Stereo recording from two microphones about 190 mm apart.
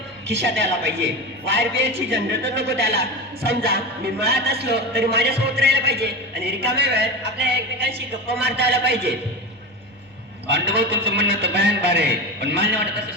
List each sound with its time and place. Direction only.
0.3 s a man's voice: 65° right (ahead or behind)
2.1 s a man's voice: 65° right (ahead or behind)
10.4 s a man's voice: 60° right (ahead or behind)